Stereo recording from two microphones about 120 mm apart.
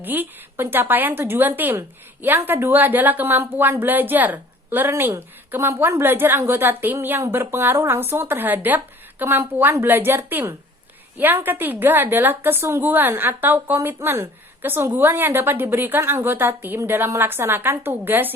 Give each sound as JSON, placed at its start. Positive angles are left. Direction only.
{"t": 0.0, "sound": "a woman's voice", "side_deg": -15}